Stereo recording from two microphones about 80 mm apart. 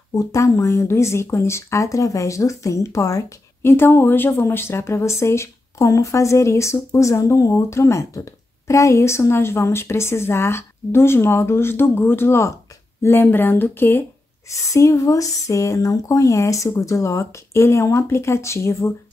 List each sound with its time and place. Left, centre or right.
0.1 s speech: left
3.6 s speech: left
14.5 s speech: left